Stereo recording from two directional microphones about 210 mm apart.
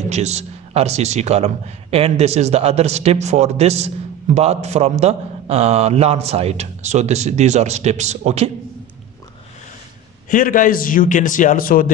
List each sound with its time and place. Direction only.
0.1 s a man's voice: 30° right (ahead or behind)
10.3 s a man's voice: 40° left (ahead or behind)